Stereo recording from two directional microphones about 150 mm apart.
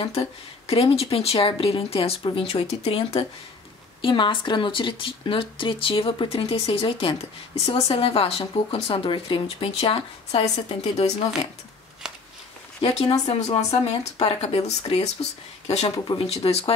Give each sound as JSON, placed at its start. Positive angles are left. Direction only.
{"t": 0.0, "sound": "speech", "side_deg": 40}
{"t": 12.8, "sound": "speech", "side_deg": 45}
{"t": 16.1, "sound": "speech", "side_deg": 40}